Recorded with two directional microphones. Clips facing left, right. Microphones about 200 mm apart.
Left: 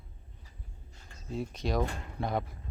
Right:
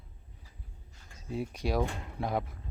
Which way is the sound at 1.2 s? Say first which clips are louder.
Right 1 dB; 10° right (ahead or behind).